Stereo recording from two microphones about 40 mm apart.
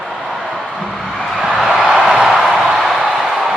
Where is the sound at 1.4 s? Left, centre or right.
Centre.